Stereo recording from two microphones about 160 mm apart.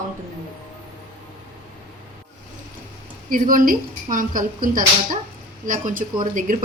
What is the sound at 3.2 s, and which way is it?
A woman's voice, 60° right (ahead or behind).